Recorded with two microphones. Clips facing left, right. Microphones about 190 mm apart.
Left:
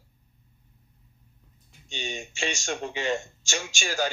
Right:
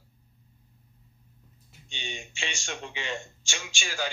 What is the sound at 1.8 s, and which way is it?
Speech, 45° left (ahead or behind).